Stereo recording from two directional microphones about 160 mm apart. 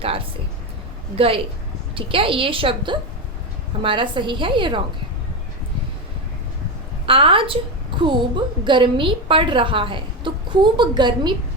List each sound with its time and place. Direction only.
1.1 s a woman's voice: 35° right (ahead or behind)
7.0 s a woman's voice: 35° right (ahead or behind)